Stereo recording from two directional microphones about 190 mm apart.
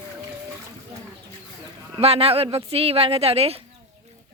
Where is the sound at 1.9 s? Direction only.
30° right (ahead or behind).